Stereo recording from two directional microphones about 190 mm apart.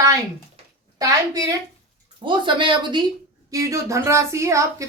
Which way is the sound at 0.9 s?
20° right (ahead or behind).